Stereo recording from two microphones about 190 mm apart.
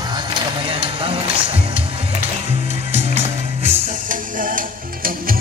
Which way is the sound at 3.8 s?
45° right (ahead or behind).